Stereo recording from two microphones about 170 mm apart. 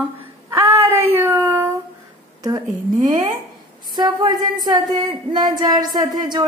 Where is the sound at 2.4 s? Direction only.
20° right (ahead or behind).